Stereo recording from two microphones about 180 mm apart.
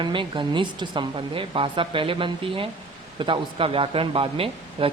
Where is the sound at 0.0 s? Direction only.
25° right (ahead or behind).